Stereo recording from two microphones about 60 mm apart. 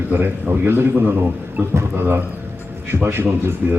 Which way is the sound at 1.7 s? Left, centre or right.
Right.